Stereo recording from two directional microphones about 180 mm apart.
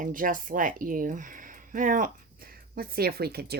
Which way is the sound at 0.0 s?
50° right (ahead or behind).